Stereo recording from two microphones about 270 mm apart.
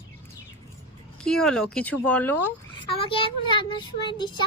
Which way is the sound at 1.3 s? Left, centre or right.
Centre.